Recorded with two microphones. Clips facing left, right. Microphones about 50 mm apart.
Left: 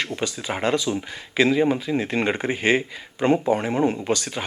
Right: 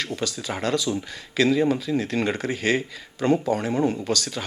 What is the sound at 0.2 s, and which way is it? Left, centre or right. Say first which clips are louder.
Speech: left 2 dB; left.